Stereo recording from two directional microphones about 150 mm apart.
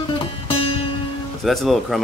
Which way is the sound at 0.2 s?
35° left (ahead or behind).